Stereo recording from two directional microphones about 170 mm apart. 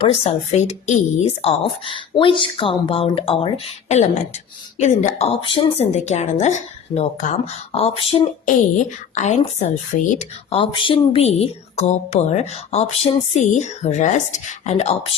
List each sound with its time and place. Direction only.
0.0 s a woman's voice: 35° left (ahead or behind)